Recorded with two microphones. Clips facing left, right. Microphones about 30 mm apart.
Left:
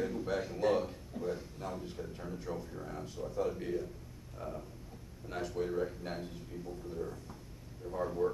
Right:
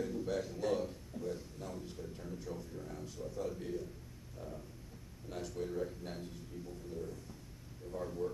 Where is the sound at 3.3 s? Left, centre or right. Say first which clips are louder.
Left 6 dB; left.